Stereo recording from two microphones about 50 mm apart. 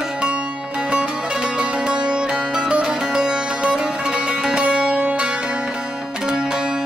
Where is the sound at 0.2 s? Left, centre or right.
Centre.